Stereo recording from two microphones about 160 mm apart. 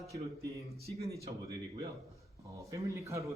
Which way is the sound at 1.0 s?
20° right (ahead or behind).